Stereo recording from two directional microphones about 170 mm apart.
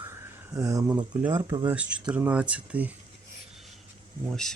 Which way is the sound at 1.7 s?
5° right (ahead or behind).